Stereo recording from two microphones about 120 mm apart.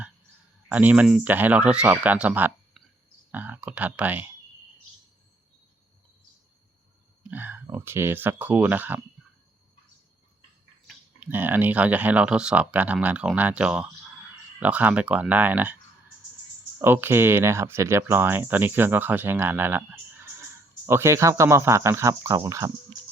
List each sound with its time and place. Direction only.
0.7 s speech: 15° right (ahead or behind)
7.3 s speech: 15° right (ahead or behind)
11.2 s speech: 15° right (ahead or behind)